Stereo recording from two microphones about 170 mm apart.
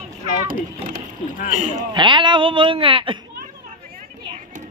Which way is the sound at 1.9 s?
25° right (ahead or behind).